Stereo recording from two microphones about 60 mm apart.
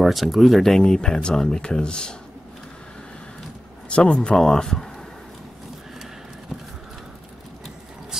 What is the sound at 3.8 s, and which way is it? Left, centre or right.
A man's voice, centre.